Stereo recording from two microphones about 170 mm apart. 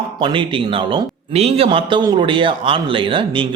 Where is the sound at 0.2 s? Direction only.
30° right (ahead or behind).